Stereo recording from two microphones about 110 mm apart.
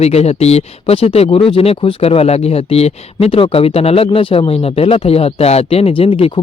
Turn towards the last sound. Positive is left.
turn(degrees=55)  # may be behind; listen again after turning